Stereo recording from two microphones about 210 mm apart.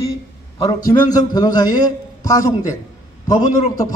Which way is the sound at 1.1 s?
20° left (ahead or behind).